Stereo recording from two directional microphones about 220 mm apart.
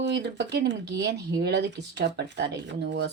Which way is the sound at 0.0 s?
50° right (ahead or behind).